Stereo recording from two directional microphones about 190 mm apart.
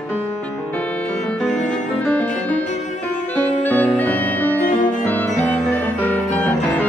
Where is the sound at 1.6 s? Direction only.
5° left (ahead or behind).